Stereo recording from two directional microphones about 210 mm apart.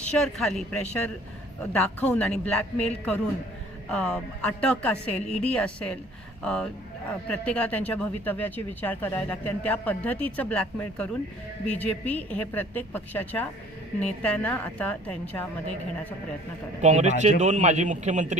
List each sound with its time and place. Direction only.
0.0 s a woman's voice: 5° left (ahead or behind)
1.8 s a woman's voice: 5° left (ahead or behind)
16.8 s a man's voice: 35° right (ahead or behind)